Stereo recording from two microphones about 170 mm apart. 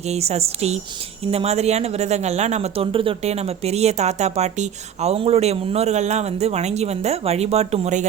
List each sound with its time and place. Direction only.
0.1 s speech: 40° right (ahead or behind)